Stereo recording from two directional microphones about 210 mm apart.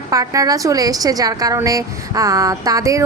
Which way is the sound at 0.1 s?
15° right (ahead or behind).